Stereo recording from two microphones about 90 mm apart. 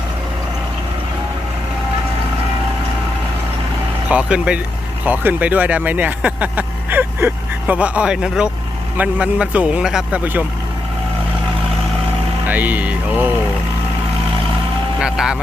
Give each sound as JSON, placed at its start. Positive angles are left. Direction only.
{"t": 4.1, "sound": "speech", "side_deg": -15}
{"t": 12.5, "sound": "music", "side_deg": -20}
{"t": 15.0, "sound": "speech", "side_deg": -10}